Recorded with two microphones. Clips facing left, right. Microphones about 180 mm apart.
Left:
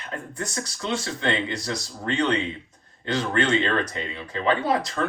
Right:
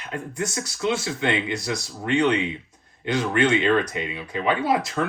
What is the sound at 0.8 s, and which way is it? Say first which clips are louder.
Speech: right 3 dB; 10° right (ahead or behind).